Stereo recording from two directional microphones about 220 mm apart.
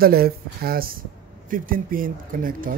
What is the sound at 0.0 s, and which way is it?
Speech, 45° right (ahead or behind).